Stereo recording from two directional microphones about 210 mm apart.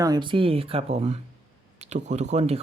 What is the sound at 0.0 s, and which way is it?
Speech, 20° right (ahead or behind).